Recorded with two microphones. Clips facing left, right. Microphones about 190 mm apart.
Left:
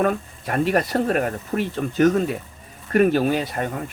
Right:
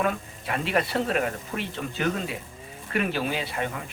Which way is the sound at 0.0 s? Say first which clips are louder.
Left 6 dB; 45° left (ahead or behind).